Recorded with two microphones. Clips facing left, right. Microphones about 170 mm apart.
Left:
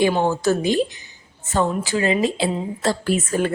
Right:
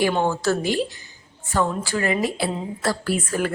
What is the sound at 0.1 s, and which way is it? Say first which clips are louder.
A woman's voice: left 2 dB; 15° left (ahead or behind).